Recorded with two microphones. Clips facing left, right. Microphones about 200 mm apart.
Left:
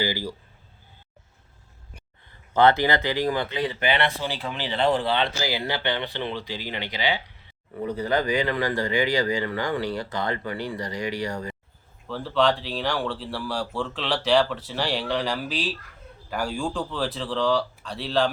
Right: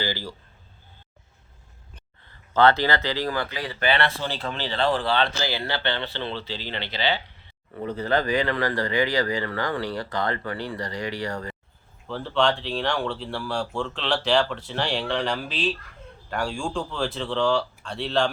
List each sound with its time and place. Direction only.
0.0 s speech: 15° left (ahead or behind)
2.5 s speech: 15° left (ahead or behind)
12.0 s speech: centre (ahead or behind)